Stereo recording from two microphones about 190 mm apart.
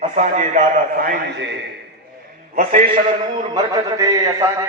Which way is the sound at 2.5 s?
40° right (ahead or behind).